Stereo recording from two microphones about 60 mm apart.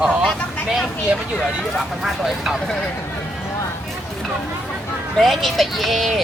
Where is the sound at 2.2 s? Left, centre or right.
Centre.